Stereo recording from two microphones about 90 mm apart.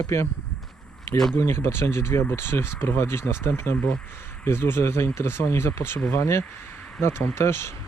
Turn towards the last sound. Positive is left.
turn(degrees=30)  # may be behind; listen again after turning